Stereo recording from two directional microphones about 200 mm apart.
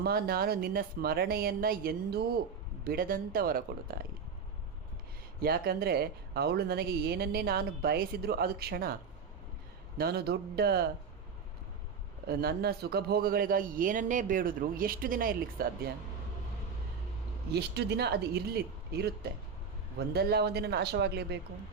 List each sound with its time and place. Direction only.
0.0 s speech: 50° right (ahead or behind)
5.4 s speech: 50° right (ahead or behind)
10.0 s speech: 50° right (ahead or behind)
12.3 s speech: 50° right (ahead or behind)
17.5 s speech: 55° right (ahead or behind)